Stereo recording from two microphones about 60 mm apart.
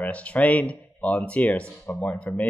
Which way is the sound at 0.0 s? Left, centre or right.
Left.